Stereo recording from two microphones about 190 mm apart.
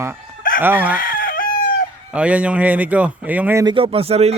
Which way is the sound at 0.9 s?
50° left (ahead or behind).